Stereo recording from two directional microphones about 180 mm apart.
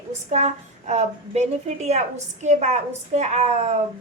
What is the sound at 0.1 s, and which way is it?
A woman's voice, 40° right (ahead or behind).